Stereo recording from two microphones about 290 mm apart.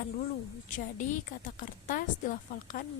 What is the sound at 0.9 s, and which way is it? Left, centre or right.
A woman's voice, left.